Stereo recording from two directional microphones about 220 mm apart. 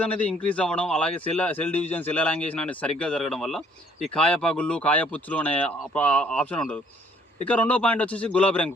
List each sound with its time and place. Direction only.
0.0 s a man's voice: 5° left (ahead or behind)